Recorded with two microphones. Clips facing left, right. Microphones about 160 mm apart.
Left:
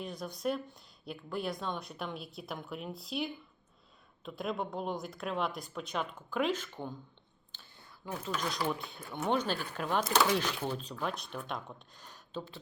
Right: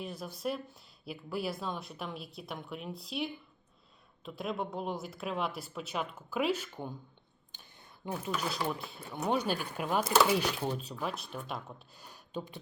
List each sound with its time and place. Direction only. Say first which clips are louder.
0.0 s speech: left 1 dB; 5° right (ahead or behind)
7.5 s a sound: even; 20° right (ahead or behind)
8.3 s speech: left 1 dB; 5° right (ahead or behind)